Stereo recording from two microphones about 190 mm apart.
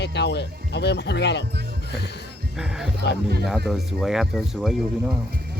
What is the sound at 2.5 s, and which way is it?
Speech, 5° right (ahead or behind).